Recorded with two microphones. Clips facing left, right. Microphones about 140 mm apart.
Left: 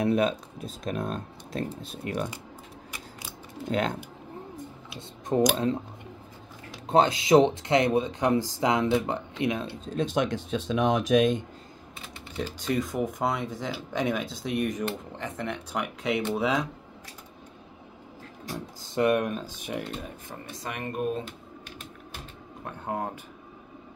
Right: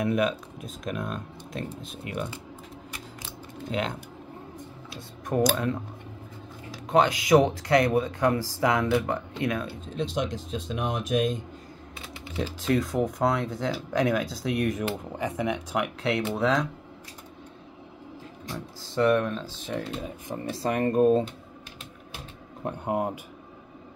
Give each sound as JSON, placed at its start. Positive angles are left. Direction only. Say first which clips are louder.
{"t": 0.0, "sound": "speech", "louder": "left 1 dB", "side_deg": 30}
{"t": 3.7, "sound": "speech", "louder": "left 2 dB", "side_deg": 40}
{"t": 4.8, "sound": "speech", "louder": "left 1 dB", "side_deg": 15}
{"t": 9.8, "sound": "speech", "louder": "left 4 dB", "side_deg": 50}
{"t": 12.4, "sound": "speech", "louder": "right 3 dB", "side_deg": 0}
{"t": 18.9, "sound": "speech", "louder": "right 1 dB", "side_deg": 15}
{"t": 20.5, "sound": "speech", "louder": "right 10 dB", "side_deg": -35}
{"t": 22.7, "sound": "speech", "louder": "right 5 dB", "side_deg": -15}